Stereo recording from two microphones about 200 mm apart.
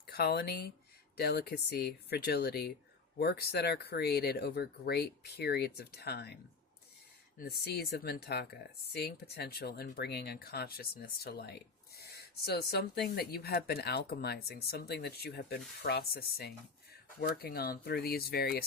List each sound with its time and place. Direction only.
0.1 s speech: 55° left (ahead or behind)